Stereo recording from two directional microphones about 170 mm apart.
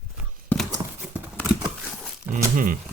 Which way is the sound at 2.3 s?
50° right (ahead or behind).